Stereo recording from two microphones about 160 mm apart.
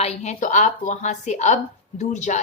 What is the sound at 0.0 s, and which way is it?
A woman's voice, 40° left (ahead or behind).